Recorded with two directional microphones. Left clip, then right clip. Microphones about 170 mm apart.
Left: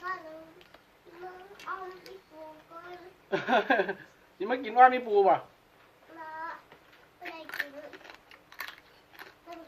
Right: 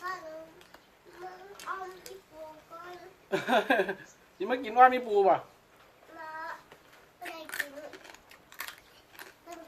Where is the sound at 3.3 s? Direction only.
5° right (ahead or behind).